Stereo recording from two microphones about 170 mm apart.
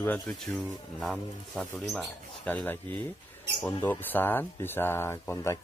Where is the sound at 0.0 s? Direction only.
10° left (ahead or behind).